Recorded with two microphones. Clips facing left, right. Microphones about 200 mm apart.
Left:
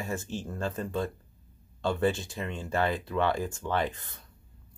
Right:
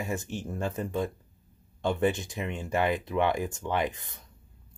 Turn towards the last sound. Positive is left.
turn(degrees=-15)  # may be behind; listen again after turning